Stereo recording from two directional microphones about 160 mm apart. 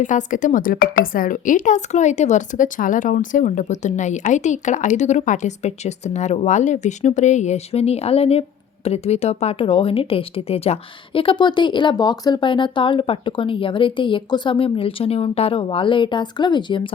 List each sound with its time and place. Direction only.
0.0 s speech: 50° left (ahead or behind); by 16.9 s 30° left (ahead or behind)